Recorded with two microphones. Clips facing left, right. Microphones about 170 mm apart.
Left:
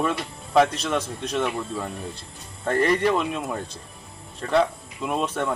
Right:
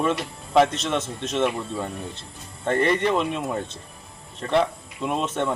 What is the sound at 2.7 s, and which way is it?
Speech, 25° right (ahead or behind).